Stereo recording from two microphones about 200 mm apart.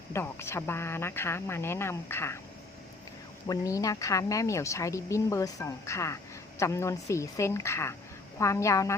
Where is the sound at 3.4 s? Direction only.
20° left (ahead or behind).